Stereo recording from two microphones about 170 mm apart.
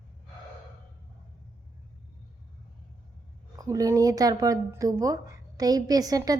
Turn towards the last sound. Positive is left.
turn(degrees=-20)  # may be behind; listen again after turning